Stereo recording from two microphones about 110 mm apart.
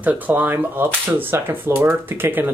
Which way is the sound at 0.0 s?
15° right (ahead or behind).